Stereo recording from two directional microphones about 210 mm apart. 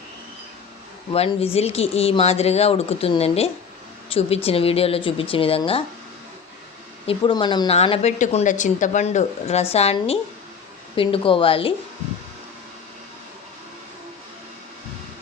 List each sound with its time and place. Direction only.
1.1 s speech: 30° left (ahead or behind)
7.1 s speech: 20° left (ahead or behind)